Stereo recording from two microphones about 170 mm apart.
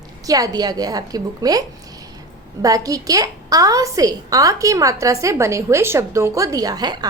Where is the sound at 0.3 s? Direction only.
20° right (ahead or behind).